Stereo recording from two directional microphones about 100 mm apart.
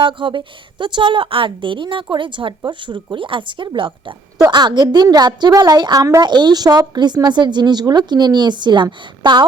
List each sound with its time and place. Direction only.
0.0 s a woman's voice: 55° right (ahead or behind)
4.4 s a woman's voice: 45° right (ahead or behind)